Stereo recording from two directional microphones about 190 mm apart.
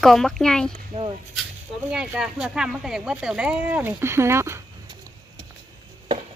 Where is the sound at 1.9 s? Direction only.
5° right (ahead or behind).